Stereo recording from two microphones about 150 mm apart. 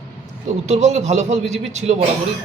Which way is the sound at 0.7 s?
50° right (ahead or behind).